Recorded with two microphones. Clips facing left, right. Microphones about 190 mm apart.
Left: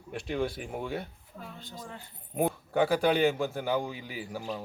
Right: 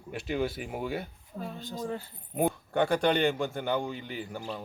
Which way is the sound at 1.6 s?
40° right (ahead or behind).